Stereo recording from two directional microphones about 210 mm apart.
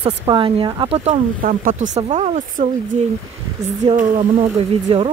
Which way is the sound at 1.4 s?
40° right (ahead or behind).